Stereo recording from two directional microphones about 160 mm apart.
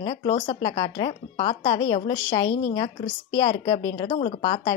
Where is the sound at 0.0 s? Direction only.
30° left (ahead or behind).